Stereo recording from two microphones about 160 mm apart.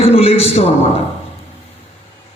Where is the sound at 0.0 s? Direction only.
40° left (ahead or behind).